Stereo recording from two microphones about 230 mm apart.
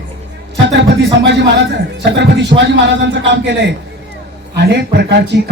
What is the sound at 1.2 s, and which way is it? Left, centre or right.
A man's voice, right.